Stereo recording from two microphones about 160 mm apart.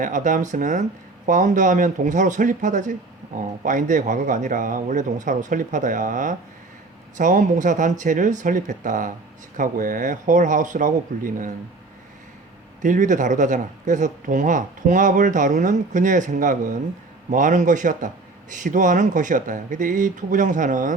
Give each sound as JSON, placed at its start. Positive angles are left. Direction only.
{"t": 0.0, "sound": "speech", "side_deg": -55}
{"t": 12.8, "sound": "speech", "side_deg": -55}